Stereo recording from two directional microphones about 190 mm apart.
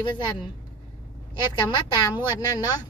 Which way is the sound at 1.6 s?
25° left (ahead or behind).